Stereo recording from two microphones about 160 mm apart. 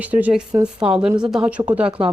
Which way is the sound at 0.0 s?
10° right (ahead or behind).